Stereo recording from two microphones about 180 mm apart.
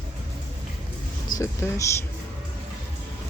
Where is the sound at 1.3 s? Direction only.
15° left (ahead or behind).